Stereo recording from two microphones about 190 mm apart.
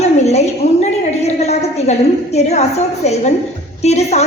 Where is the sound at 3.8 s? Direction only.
35° left (ahead or behind).